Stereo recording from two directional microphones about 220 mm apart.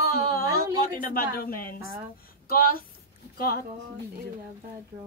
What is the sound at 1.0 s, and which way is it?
A woman's voice, 40° left (ahead or behind).